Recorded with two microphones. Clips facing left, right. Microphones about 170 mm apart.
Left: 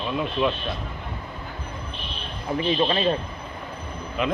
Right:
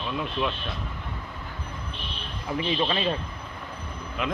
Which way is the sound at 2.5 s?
30° left (ahead or behind).